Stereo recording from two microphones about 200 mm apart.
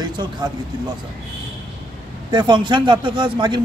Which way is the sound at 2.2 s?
20° right (ahead or behind).